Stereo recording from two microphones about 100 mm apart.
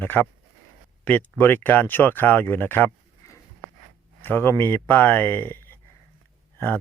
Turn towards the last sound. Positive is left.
turn(degrees=20)  # may be behind; listen again after turning